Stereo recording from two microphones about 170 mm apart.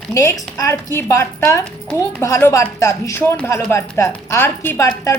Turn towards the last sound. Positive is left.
turn(degrees=15)  # may be behind; listen again after turning